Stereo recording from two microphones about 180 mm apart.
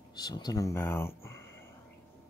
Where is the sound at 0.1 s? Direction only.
20° left (ahead or behind).